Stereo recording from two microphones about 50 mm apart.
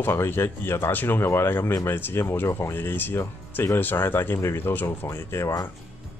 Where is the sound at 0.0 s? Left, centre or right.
Left.